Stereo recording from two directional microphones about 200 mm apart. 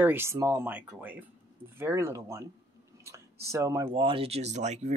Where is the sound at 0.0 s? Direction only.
10° right (ahead or behind).